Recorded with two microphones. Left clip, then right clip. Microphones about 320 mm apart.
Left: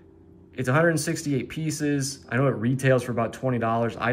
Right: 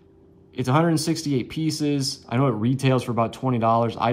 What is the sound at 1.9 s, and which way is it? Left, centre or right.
Speech, centre.